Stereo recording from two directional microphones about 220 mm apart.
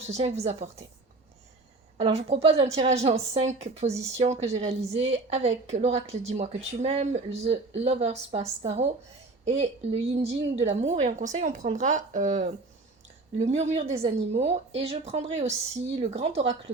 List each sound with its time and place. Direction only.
0.1 s a woman's voice: 30° right (ahead or behind)
2.0 s a woman's voice: 25° right (ahead or behind)
9.5 s a woman's voice: 30° right (ahead or behind)